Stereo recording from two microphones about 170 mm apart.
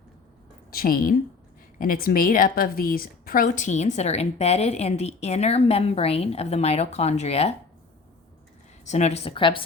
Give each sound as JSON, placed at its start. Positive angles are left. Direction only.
{"t": 0.7, "sound": "a woman's voice", "side_deg": 60}
{"t": 8.8, "sound": "a woman's voice", "side_deg": 45}